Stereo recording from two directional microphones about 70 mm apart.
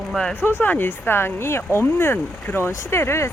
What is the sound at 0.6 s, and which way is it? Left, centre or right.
Speech, left.